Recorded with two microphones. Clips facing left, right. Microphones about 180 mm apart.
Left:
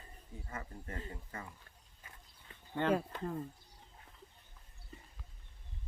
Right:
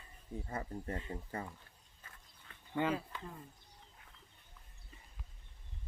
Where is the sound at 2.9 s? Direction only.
50° left (ahead or behind).